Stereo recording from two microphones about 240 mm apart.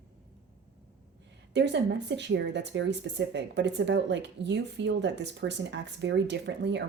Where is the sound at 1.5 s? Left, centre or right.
Right.